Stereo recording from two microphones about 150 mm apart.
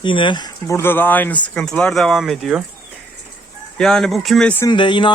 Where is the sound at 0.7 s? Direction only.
15° left (ahead or behind).